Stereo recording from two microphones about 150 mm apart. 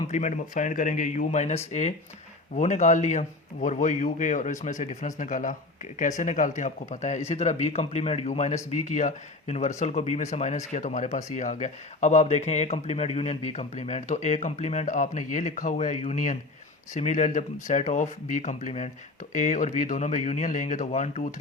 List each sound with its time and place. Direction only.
0.1 s speech: 55° left (ahead or behind)